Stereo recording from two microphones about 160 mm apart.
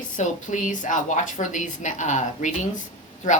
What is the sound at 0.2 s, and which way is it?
A woman's voice, 50° left (ahead or behind).